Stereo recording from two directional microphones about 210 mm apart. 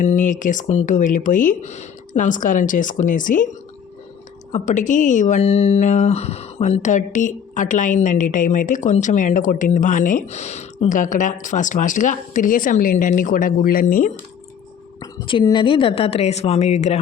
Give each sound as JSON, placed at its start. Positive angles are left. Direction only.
{"t": 0.0, "sound": "speech", "side_deg": 35}
{"t": 4.5, "sound": "speech", "side_deg": 35}
{"t": 15.3, "sound": "speech", "side_deg": 25}